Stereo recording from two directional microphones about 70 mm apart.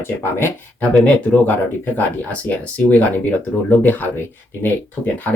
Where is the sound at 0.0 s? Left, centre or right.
Left.